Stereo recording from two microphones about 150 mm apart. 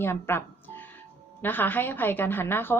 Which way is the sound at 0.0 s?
15° left (ahead or behind).